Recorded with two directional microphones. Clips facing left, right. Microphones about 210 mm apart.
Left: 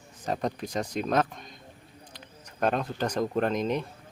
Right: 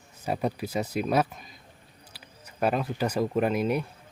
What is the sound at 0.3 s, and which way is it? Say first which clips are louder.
Speech: right 1 dB; 5° right (ahead or behind).